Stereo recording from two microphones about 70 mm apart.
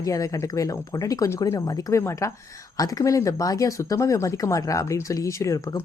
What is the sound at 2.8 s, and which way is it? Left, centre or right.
Speech, left.